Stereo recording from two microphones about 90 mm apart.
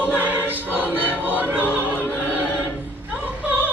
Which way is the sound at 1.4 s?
15° right (ahead or behind).